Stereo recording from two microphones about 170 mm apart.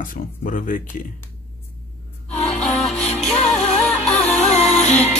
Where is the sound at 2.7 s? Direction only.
5° left (ahead or behind).